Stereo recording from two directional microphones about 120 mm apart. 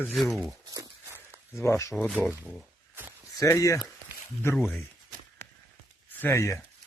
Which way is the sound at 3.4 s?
25° left (ahead or behind).